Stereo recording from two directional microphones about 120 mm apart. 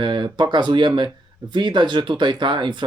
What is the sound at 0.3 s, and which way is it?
Speech, 40° right (ahead or behind).